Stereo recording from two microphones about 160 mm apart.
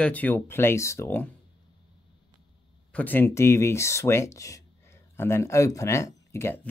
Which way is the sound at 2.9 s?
10° left (ahead or behind).